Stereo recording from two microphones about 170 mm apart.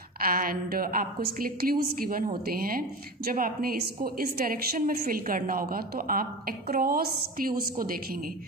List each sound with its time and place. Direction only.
0.2 s a woman's voice: 60° right (ahead or behind)